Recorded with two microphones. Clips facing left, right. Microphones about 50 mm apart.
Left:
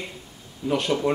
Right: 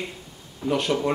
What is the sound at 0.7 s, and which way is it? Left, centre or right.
Speech, centre.